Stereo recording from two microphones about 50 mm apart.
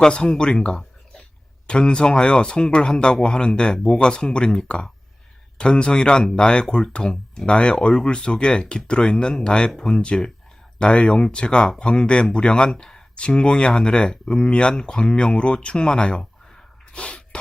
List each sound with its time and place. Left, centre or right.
0.0 s speech: centre
16.9 s snort: left